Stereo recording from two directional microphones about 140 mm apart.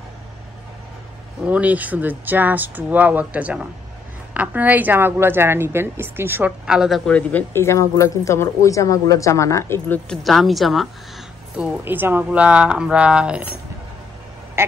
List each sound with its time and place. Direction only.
1.4 s a woman's voice: 10° right (ahead or behind)
7.1 s speech: 10° left (ahead or behind)
10.0 s a woman's voice: centre (ahead or behind)
11.5 s a woman's voice: 10° right (ahead or behind)